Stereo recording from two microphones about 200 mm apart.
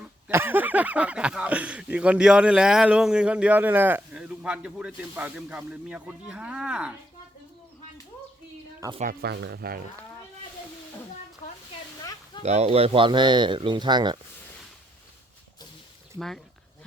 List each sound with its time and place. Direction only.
0.3 s speech: 10° right (ahead or behind)
9.2 s speech: 55° right (ahead or behind)
12.4 s speech: 30° right (ahead or behind)
16.1 s speech: centre (ahead or behind)